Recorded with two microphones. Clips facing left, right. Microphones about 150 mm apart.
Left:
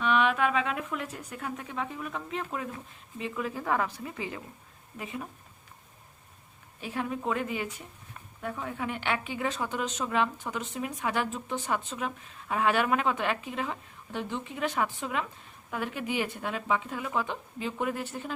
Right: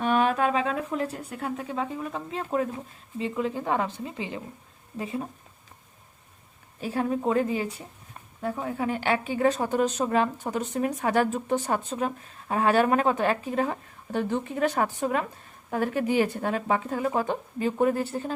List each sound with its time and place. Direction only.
0.0 s a woman's voice: 40° right (ahead or behind)
6.8 s a woman's voice: 35° right (ahead or behind)